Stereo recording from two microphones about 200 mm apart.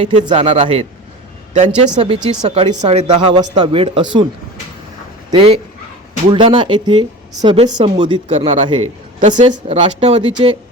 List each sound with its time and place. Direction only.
0.0 s speech: 25° right (ahead or behind)
5.3 s speech: 25° right (ahead or behind)